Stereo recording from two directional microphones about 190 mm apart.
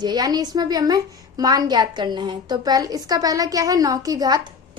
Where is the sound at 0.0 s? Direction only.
20° right (ahead or behind).